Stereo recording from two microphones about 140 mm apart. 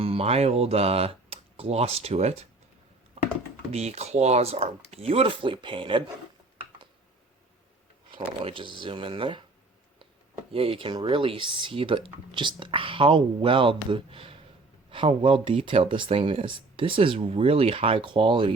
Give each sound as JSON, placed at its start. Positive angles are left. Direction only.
{"t": 0.0, "sound": "speech", "side_deg": -45}
{"t": 3.2, "sound": "computer keyboard", "side_deg": -45}
{"t": 3.7, "sound": "speech", "side_deg": -50}
{"t": 8.1, "sound": "speech", "side_deg": -40}
{"t": 10.5, "sound": "speech", "side_deg": -40}